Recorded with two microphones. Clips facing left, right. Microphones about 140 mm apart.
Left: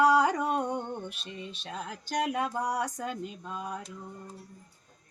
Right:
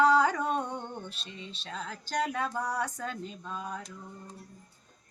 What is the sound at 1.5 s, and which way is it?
Speech, 15° left (ahead or behind).